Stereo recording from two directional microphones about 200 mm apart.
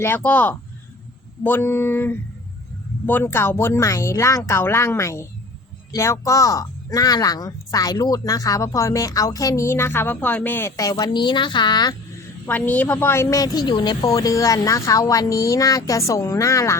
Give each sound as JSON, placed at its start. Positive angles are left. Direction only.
{"t": 0.0, "sound": "speech", "side_deg": 10}
{"t": 12.5, "sound": "speech", "side_deg": 10}